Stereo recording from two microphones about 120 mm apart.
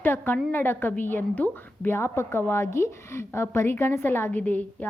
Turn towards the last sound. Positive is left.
turn(degrees=15)  # may be behind; listen again after turning